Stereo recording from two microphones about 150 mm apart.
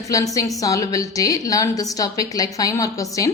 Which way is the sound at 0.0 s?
20° left (ahead or behind).